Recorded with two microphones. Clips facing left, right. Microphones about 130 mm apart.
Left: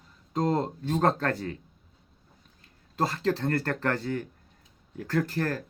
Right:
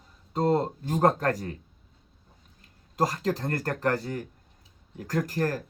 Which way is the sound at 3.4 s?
40° right (ahead or behind).